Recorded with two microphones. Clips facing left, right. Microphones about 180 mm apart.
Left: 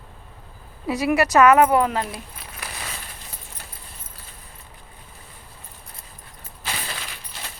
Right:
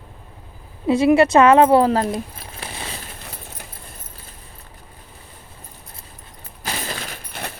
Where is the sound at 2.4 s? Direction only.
25° right (ahead or behind).